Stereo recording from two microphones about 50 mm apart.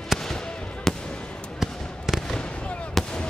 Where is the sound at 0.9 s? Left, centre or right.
Centre.